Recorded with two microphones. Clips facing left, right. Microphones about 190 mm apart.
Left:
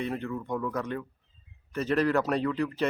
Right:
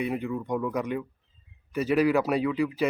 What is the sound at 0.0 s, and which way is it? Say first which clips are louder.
Speech: right 3 dB; 10° right (ahead or behind).